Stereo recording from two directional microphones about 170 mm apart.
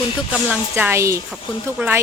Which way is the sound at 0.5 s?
10° right (ahead or behind).